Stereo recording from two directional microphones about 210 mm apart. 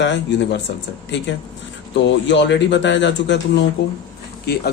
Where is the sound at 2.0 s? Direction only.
60° left (ahead or behind).